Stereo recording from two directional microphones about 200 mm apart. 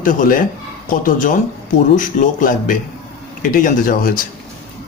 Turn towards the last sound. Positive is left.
turn(degrees=45)  # may be behind; listen again after turning